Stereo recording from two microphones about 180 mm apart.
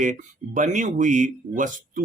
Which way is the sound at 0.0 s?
45° right (ahead or behind).